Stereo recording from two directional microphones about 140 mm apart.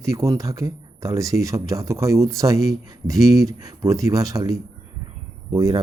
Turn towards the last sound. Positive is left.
turn(degrees=-25)  # may be behind; listen again after turning